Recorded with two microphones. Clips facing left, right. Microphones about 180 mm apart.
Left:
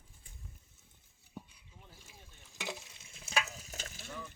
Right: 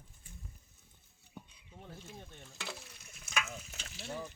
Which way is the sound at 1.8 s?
60° right (ahead or behind).